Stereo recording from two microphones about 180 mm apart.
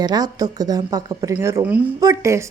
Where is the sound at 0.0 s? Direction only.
20° right (ahead or behind).